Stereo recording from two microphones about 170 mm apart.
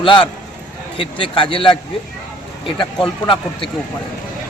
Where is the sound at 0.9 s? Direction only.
30° left (ahead or behind).